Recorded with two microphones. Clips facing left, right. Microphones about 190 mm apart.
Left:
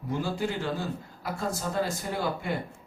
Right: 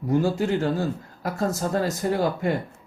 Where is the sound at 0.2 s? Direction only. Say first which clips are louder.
Right 6 dB; 45° right (ahead or behind).